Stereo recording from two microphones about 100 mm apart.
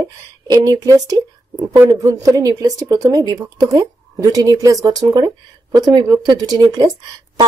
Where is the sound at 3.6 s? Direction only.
35° right (ahead or behind).